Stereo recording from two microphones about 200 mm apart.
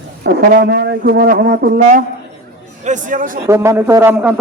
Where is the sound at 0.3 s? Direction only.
55° right (ahead or behind).